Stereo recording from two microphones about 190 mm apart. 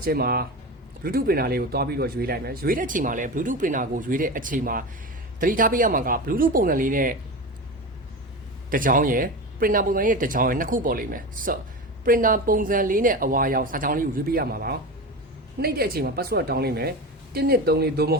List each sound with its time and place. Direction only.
0.0 s speech: 55° right (ahead or behind)
8.7 s speech: 45° right (ahead or behind)